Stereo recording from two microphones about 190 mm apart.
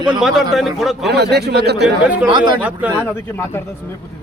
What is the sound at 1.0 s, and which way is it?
Speech, 60° right (ahead or behind).